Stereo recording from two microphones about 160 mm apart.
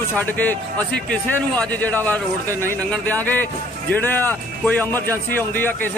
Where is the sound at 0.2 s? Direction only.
10° left (ahead or behind).